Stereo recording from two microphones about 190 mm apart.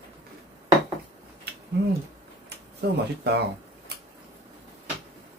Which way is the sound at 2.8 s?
55° right (ahead or behind).